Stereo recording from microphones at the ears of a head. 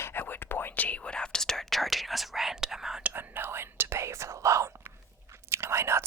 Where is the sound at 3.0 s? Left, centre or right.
Right.